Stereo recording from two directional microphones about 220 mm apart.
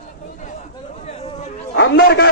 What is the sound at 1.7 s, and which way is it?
Speech, 50° left (ahead or behind).